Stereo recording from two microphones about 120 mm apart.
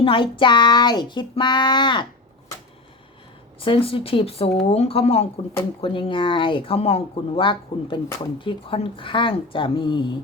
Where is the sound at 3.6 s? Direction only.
50° left (ahead or behind).